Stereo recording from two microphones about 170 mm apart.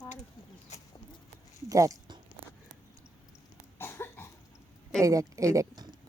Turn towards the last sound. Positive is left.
turn(degrees=-25)  # may be behind; listen again after turning